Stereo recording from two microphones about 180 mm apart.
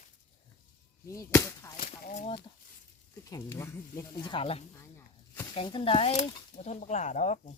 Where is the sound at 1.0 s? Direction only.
15° left (ahead or behind).